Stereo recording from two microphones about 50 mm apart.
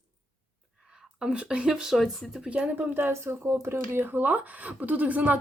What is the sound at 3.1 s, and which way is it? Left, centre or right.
Speech, right.